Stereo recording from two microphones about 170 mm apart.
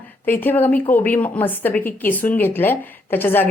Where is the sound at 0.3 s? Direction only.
10° left (ahead or behind).